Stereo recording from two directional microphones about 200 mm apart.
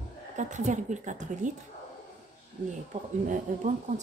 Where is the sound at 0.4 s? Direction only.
35° right (ahead or behind).